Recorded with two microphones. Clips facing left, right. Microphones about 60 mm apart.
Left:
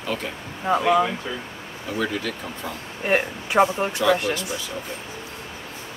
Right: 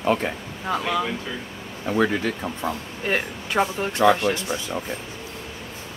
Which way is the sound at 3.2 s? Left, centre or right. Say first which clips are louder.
Left 5 dB; centre.